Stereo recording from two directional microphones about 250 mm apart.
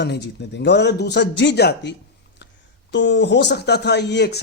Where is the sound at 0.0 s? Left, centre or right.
Left.